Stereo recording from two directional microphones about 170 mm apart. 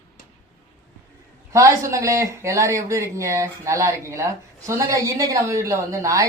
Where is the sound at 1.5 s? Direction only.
15° right (ahead or behind).